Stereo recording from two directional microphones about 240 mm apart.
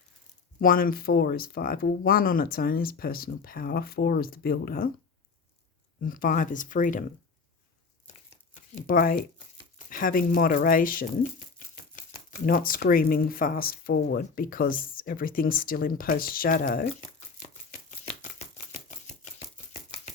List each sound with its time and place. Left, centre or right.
0.6 s speech: left
6.0 s speech: left
8.7 s speech: left
18.2 s a sound: left